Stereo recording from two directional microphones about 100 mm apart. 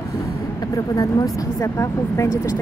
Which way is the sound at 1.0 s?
35° left (ahead or behind).